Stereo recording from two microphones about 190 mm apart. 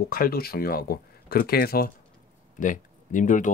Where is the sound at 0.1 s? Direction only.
50° left (ahead or behind).